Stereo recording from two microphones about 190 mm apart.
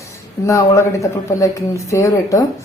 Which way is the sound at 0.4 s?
15° left (ahead or behind).